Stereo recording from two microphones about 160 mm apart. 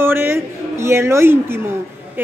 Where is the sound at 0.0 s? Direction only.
15° right (ahead or behind).